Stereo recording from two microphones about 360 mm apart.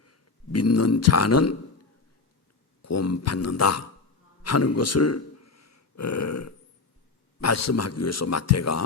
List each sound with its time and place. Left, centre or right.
0.0 s speech: left
2.8 s a man's voice: left